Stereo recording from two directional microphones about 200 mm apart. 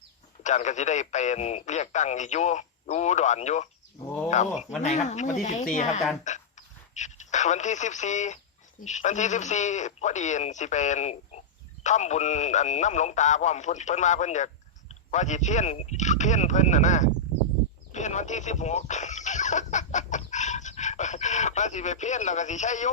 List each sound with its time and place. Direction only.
0.4 s speech: 35° left (ahead or behind)